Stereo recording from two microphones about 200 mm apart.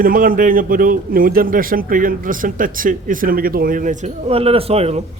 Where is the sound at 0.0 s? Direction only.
45° right (ahead or behind).